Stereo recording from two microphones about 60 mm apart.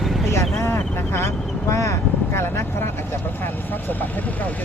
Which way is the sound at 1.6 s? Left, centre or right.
Left.